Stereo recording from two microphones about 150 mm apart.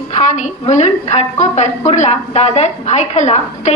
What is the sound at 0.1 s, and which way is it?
A woman's voice, 55° left (ahead or behind).